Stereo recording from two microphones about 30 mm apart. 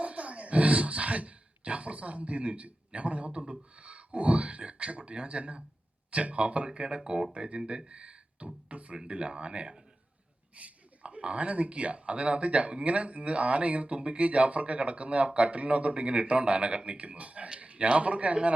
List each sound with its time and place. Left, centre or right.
0.0 s speech: right
7.7 s a sound: right
8.7 s speech: right
10.5 s speech: right